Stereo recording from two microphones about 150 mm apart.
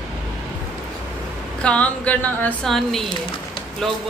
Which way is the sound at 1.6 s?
10° left (ahead or behind).